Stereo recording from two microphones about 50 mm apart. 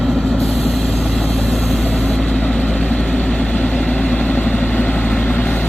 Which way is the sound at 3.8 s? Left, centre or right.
Centre.